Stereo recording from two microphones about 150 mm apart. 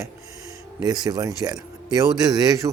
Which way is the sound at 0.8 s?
25° right (ahead or behind).